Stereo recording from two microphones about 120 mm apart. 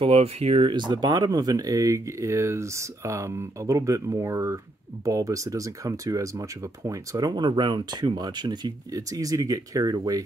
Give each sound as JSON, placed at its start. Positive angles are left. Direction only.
{"t": 0.0, "sound": "speech", "side_deg": -55}
{"t": 0.7, "sound": "speech", "side_deg": -40}